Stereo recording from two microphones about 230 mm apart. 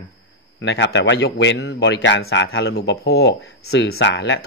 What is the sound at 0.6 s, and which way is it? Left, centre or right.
Speech, left.